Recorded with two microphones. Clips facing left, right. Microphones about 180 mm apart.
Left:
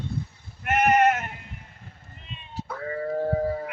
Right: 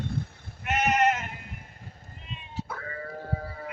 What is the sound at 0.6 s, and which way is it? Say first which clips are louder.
Sheep: left 4 dB; 55° left (ahead or behind).